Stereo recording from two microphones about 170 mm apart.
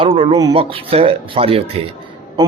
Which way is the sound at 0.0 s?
30° right (ahead or behind).